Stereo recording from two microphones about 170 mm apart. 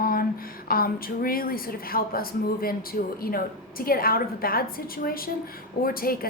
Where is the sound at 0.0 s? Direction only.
60° left (ahead or behind).